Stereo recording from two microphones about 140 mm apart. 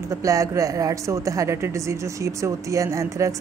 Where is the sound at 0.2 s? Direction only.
25° right (ahead or behind).